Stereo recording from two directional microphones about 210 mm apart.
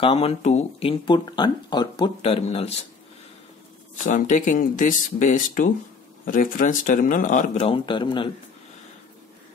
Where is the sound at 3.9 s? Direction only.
35° left (ahead or behind).